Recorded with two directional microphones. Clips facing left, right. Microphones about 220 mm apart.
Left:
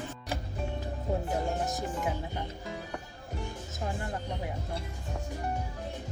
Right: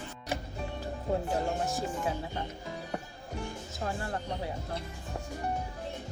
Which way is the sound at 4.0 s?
15° left (ahead or behind).